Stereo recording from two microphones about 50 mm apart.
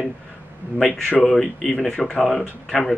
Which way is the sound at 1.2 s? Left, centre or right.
Centre.